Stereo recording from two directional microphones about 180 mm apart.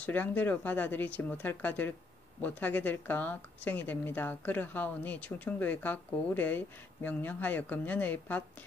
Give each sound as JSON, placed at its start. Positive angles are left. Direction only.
{"t": 0.0, "sound": "a woman's voice", "side_deg": 10}